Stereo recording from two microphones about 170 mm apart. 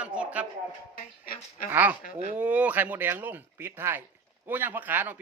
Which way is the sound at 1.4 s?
55° left (ahead or behind).